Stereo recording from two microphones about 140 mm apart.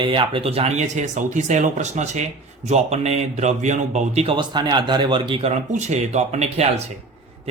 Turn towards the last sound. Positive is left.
turn(degrees=-50)  # may be behind; listen again after turning